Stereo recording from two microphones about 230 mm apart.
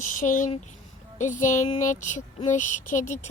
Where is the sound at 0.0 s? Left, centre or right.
Left.